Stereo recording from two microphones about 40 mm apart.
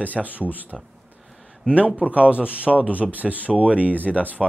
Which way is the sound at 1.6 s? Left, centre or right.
Right.